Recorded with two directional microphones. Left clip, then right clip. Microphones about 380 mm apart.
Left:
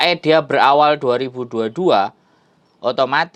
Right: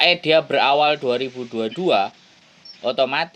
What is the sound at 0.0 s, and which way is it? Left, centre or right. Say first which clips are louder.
Speech: left 2 dB; centre.